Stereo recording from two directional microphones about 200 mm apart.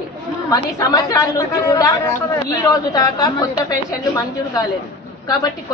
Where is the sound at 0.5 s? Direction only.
15° left (ahead or behind).